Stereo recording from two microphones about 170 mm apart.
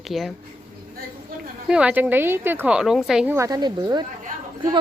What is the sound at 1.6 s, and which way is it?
A woman's voice, 5° right (ahead or behind).